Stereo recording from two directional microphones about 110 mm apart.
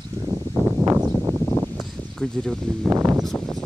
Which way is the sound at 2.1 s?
5° left (ahead or behind).